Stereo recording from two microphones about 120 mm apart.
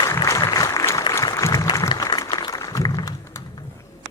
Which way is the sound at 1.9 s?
30° left (ahead or behind).